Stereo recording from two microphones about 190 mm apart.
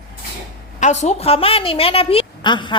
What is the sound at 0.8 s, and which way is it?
A woman's voice, 35° left (ahead or behind).